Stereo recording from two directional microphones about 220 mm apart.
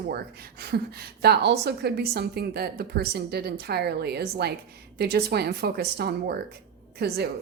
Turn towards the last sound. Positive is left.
turn(degrees=-45)  # may be behind; listen again after turning